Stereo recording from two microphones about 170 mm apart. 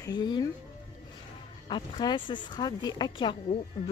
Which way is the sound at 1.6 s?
30° left (ahead or behind).